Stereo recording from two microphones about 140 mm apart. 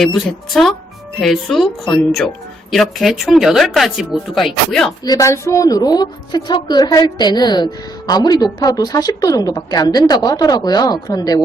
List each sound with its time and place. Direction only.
0.0 s speech: centre (ahead or behind)
5.0 s a woman's voice: 25° left (ahead or behind)